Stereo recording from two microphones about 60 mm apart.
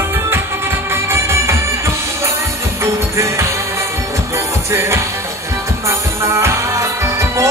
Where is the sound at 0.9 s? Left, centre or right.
Right.